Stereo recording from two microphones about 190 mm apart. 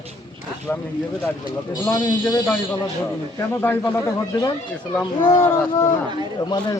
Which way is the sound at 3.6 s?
10° left (ahead or behind).